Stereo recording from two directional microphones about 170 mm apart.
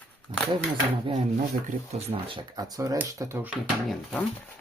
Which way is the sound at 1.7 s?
35° right (ahead or behind).